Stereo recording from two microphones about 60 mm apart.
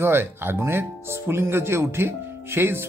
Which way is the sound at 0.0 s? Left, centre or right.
Right.